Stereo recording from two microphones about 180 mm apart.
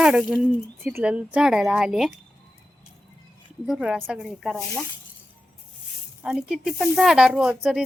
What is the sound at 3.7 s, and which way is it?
Speech, 5° right (ahead or behind).